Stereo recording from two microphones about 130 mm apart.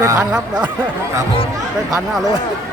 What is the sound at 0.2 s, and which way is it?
Speech, 5° right (ahead or behind).